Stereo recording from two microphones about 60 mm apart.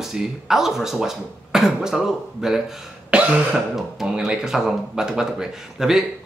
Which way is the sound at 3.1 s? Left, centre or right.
Centre.